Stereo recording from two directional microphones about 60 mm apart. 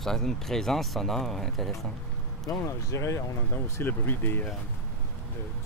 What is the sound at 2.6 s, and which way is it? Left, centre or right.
Speech, left.